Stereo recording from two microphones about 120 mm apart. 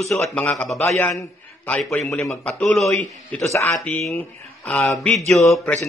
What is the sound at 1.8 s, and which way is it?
A man's voice, centre (ahead or behind).